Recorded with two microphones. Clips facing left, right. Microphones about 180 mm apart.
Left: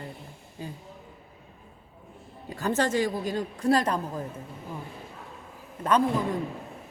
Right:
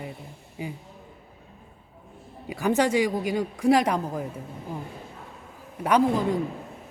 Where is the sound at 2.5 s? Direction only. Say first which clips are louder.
Right 4 dB; 10° right (ahead or behind).